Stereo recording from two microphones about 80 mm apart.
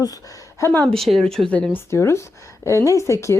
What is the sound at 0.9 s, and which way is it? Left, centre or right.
Speech, centre.